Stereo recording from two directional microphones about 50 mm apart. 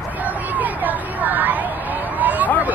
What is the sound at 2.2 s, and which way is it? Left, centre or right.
Vehicle, right.